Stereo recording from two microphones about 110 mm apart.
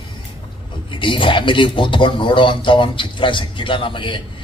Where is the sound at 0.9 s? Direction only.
50° left (ahead or behind).